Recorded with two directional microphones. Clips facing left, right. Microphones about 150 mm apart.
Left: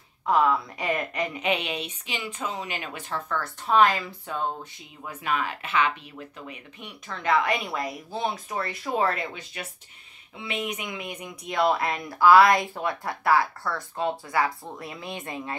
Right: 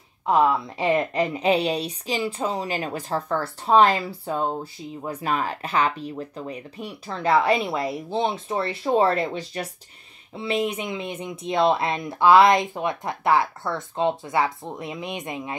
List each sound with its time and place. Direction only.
0.3 s speech: 25° right (ahead or behind)